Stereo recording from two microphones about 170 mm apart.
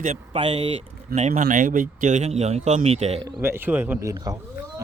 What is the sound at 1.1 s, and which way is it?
Speech, 45° right (ahead or behind).